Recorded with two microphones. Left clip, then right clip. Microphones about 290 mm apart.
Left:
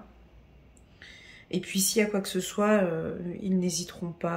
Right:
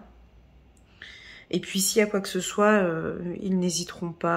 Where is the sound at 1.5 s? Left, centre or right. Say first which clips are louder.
Right 3 dB; centre.